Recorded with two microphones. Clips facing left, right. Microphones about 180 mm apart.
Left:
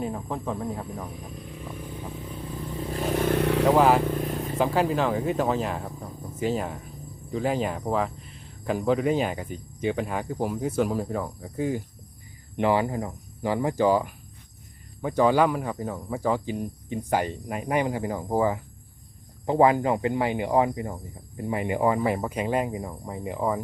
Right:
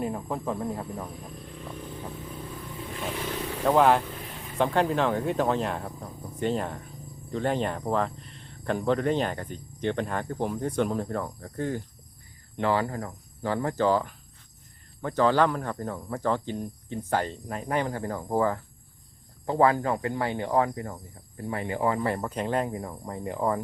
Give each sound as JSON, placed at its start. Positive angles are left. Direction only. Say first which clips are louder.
{"t": 0.0, "sound": "speech", "louder": "even", "side_deg": 0}
{"t": 2.9, "sound": "vehicle", "louder": "left 9 dB", "side_deg": 40}
{"t": 3.7, "sound": "speech", "louder": "even", "side_deg": 5}
{"t": 4.0, "sound": "vehicle", "louder": "left 12 dB", "side_deg": 45}
{"t": 4.5, "sound": "speech", "louder": "even", "side_deg": 5}